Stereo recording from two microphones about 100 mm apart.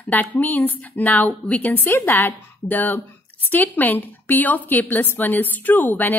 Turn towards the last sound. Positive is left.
turn(degrees=15)  # may be behind; listen again after turning